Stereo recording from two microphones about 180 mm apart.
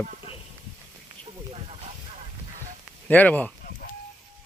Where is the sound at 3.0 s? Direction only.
10° left (ahead or behind).